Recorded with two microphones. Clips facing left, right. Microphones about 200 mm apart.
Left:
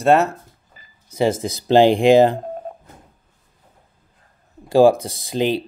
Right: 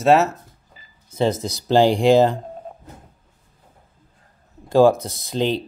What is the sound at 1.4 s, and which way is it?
Speech, 15° left (ahead or behind).